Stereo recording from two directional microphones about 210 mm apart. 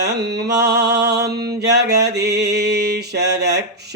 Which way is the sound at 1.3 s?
50° right (ahead or behind).